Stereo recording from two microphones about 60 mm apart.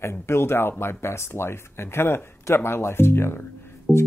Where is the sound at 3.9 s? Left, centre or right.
Centre.